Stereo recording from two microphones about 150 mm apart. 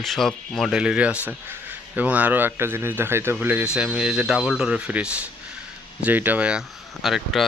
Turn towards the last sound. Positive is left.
turn(degrees=0)  # may be behind; listen again after turning